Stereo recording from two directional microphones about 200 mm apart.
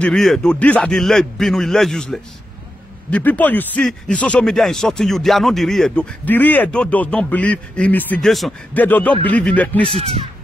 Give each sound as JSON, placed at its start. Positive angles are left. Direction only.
{"t": 0.0, "sound": "a man's voice", "side_deg": 0}
{"t": 9.8, "sound": "speech", "side_deg": -30}